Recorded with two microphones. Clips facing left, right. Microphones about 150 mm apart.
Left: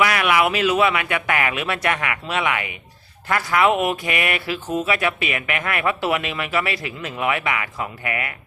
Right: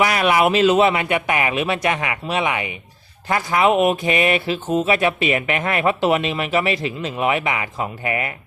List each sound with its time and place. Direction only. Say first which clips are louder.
0.0 s speech: right 2 dB; 25° right (ahead or behind)